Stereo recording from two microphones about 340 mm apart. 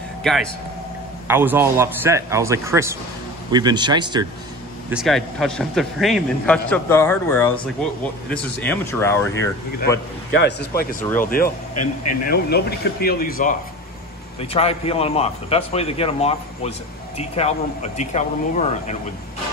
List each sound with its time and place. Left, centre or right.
0.2 s a man's voice: centre
4.9 s a man's voice: centre
10.3 s speech: left
11.7 s speech: left
12.3 s speech: left